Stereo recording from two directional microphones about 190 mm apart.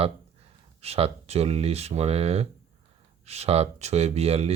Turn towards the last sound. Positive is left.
turn(degrees=-35)  # may be behind; listen again after turning